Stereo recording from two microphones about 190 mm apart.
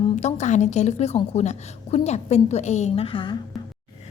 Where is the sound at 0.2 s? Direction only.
35° left (ahead or behind).